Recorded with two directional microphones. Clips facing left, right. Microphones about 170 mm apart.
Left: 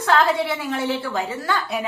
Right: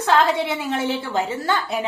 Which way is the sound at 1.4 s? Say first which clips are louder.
Right 1 dB; 25° right (ahead or behind).